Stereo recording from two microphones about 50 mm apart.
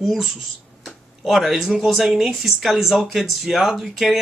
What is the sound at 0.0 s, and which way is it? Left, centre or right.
Speech, centre.